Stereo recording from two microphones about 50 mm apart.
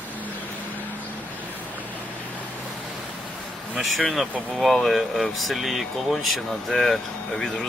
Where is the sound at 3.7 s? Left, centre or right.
Centre.